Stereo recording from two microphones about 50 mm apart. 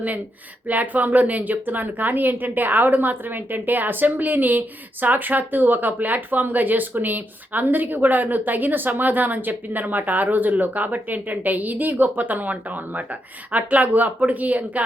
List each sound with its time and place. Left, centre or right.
0.7 s a woman's voice: right